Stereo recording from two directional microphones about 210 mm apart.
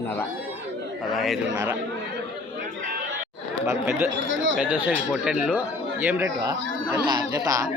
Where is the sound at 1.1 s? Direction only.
Centre (ahead or behind).